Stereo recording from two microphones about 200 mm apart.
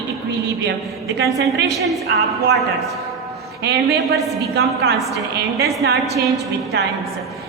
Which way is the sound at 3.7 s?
60° right (ahead or behind).